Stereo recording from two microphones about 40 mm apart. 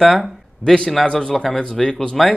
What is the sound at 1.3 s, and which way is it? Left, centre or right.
Speech, centre.